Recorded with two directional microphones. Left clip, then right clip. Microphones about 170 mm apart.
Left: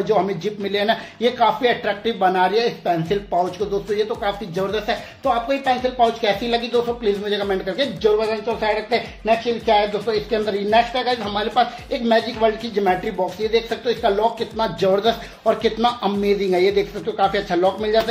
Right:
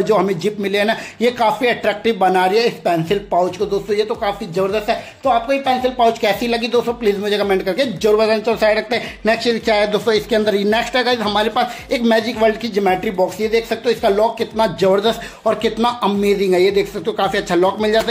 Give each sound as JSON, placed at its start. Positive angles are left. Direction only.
{"t": 0.0, "sound": "speech", "side_deg": -35}
{"t": 5.9, "sound": "speech", "side_deg": -40}